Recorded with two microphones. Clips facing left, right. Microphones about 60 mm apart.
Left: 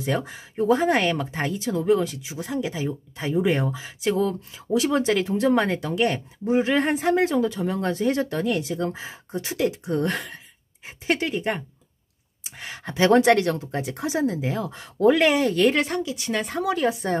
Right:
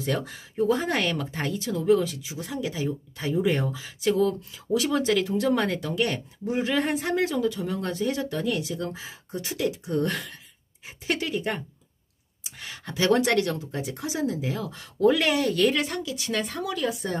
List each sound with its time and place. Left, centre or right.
0.0 s speech: left
8.8 s speech: left
12.4 s speech: left
16.0 s speech: left
16.6 s speech: left